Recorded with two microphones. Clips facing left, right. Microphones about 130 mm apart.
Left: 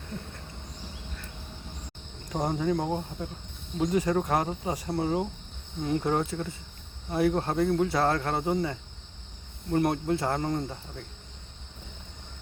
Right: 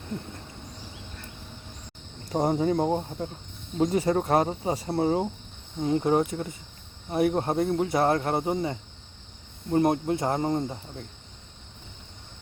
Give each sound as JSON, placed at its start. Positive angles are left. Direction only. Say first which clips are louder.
{"t": 2.3, "sound": "speech", "louder": "right 4 dB", "side_deg": -30}